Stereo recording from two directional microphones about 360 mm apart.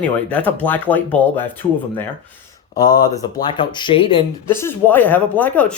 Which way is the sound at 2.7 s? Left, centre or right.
Centre.